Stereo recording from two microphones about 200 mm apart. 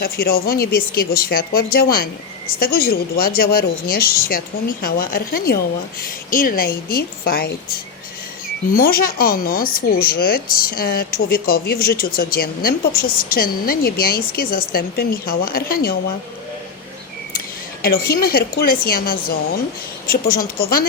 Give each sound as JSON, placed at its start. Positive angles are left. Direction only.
{"t": 0.0, "sound": "speech", "side_deg": 50}
{"t": 17.8, "sound": "speech", "side_deg": 50}